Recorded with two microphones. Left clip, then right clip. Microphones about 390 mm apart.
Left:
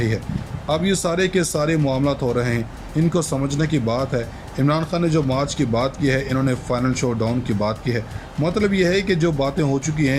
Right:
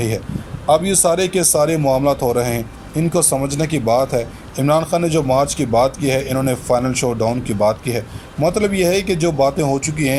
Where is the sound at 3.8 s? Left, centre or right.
Right.